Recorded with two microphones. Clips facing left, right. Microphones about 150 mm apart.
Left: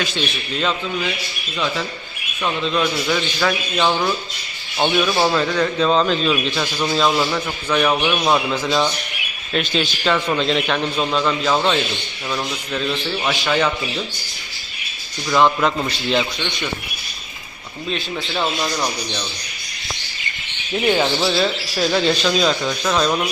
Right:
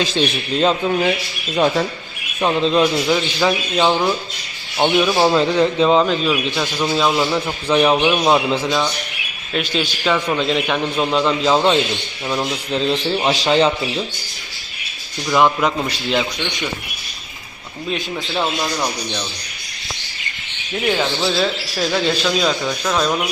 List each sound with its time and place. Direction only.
0.0 s a man's voice: 35° right (ahead or behind)
2.4 s a man's voice: 35° right (ahead or behind)
3.4 s speech: 15° right (ahead or behind)
7.7 s speech: 20° right (ahead or behind)
9.5 s speech: 5° right (ahead or behind); by 13.6 s 35° right (ahead or behind)
15.3 s speech: 5° right (ahead or behind)
17.9 s speech: 15° right (ahead or behind)
20.8 s speech: 15° left (ahead or behind); by 23.3 s 5° right (ahead or behind)